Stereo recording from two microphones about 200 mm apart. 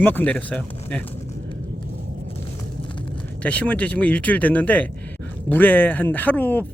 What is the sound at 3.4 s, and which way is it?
Speech, 5° left (ahead or behind).